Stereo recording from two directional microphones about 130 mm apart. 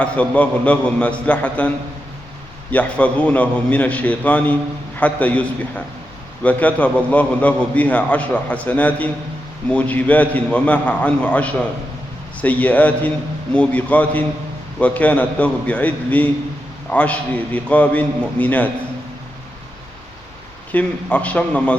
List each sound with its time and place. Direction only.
0.0 s a man's voice: 10° left (ahead or behind)
2.7 s a man's voice: 10° left (ahead or behind)
20.7 s a man's voice: 10° left (ahead or behind)